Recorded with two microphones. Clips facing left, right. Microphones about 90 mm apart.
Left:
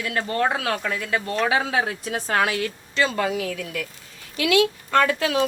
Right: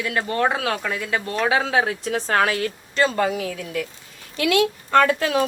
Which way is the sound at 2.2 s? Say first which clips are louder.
Right 1 dB; 40° right (ahead or behind).